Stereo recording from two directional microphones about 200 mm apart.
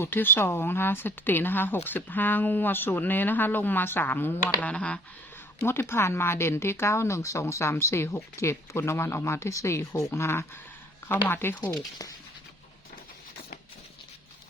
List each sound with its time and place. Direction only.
0.0 s speech: 10° left (ahead or behind)